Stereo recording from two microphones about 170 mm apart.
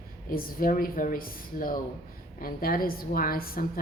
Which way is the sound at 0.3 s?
55° left (ahead or behind).